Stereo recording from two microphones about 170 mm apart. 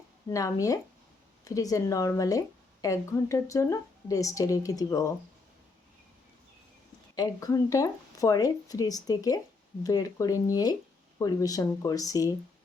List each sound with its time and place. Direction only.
0.3 s speech: 20° left (ahead or behind)
7.2 s speech: 20° left (ahead or behind)